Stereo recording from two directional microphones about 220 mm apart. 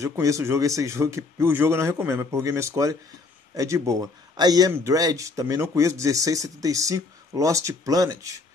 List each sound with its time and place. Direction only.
0.0 s speech: 15° right (ahead or behind)